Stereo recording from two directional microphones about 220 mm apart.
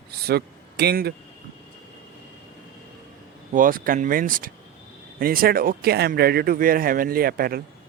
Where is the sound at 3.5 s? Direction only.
40° right (ahead or behind).